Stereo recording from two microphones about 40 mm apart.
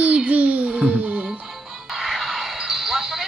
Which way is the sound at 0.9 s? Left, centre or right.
Right.